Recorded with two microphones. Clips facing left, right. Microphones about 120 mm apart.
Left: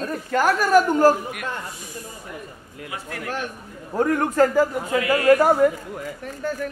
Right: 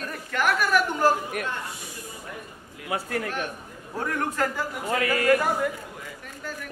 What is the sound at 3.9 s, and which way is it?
A man's voice, 45° left (ahead or behind).